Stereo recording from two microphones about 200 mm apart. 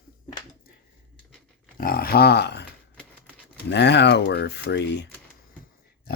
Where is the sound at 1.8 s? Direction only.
45° left (ahead or behind).